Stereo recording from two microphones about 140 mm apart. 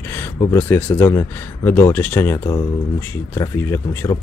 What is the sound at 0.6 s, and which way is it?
Speech, 15° left (ahead or behind).